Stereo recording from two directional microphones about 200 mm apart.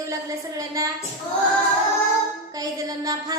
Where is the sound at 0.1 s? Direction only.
15° right (ahead or behind).